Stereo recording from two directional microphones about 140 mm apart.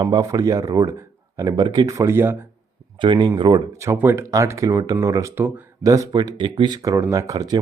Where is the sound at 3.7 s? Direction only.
20° right (ahead or behind).